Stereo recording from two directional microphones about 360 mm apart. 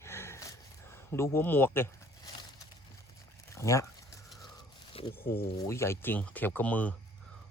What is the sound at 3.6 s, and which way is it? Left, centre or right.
Speech, centre.